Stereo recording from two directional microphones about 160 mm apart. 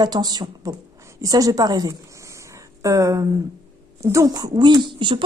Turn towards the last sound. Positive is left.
turn(degrees=-30)  # may be behind; listen again after turning